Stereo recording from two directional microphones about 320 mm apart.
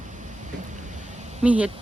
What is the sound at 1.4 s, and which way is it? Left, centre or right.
Speech, centre.